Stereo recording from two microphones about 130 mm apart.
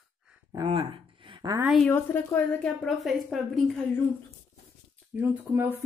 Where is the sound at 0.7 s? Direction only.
40° right (ahead or behind).